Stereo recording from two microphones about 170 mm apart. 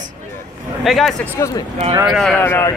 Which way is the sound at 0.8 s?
Centre (ahead or behind).